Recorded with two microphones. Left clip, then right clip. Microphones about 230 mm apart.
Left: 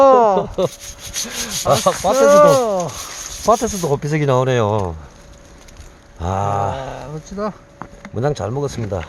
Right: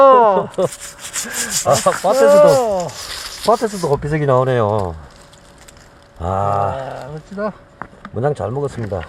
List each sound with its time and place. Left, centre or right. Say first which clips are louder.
0.0 s a sound: right 2 dB; centre
0.3 s speech: right 1 dB; centre
1.2 s rub: right 2 dB; centre
2.1 s speech: even; left
3.4 s speech: even; centre
6.1 s speech: right 2 dB; centre